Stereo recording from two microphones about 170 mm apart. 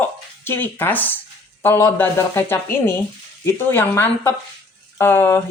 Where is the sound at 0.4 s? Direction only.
10° left (ahead or behind).